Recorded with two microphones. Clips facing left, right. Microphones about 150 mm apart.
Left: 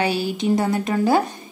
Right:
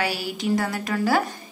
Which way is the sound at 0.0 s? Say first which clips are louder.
Left 5 dB; 20° left (ahead or behind).